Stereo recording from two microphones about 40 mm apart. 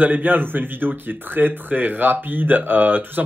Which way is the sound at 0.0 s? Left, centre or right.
Right.